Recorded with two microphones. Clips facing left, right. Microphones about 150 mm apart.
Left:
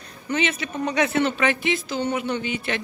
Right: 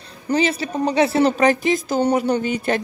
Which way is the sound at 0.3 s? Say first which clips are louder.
Right 5 dB; 35° right (ahead or behind).